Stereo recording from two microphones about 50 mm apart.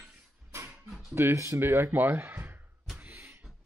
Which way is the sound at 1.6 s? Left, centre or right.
Right.